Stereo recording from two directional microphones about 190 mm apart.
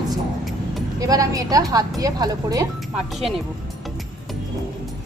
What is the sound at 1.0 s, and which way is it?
A woman's voice, 20° right (ahead or behind).